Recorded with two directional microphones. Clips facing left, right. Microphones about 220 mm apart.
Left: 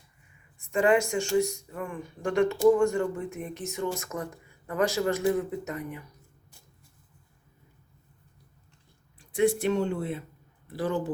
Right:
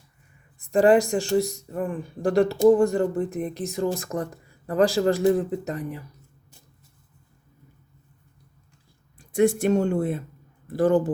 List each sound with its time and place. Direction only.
0.7 s speech: 35° right (ahead or behind)
9.1 s speech: 45° right (ahead or behind)